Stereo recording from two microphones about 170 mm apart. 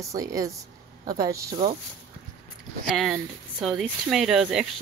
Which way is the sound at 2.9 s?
Centre (ahead or behind).